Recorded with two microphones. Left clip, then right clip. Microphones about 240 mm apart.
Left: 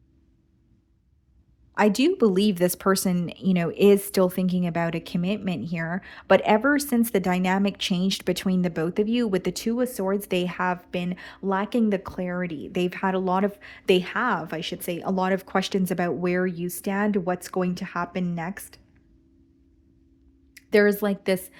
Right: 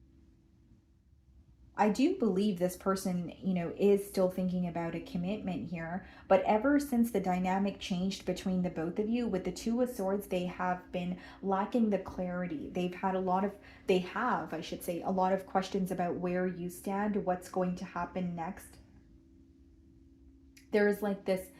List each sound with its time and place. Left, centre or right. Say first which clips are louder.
1.7 s speech: left 8 dB; left
20.6 s speech: left 9 dB; left